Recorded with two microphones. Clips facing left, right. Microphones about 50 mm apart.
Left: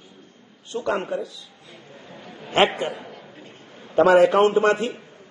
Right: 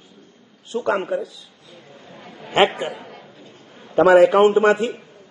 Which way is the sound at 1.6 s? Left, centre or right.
Left.